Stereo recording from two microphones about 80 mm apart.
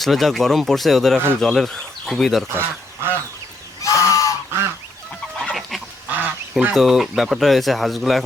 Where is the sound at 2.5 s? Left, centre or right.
Right.